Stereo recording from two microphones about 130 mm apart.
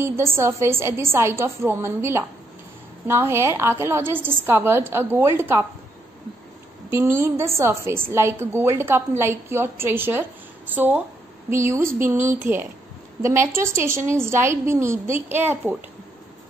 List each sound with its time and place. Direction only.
0.0 s a woman's voice: 20° right (ahead or behind)
6.9 s a woman's voice: 20° right (ahead or behind)